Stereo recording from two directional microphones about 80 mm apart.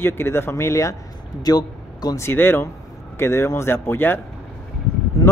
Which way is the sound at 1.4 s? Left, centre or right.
Left.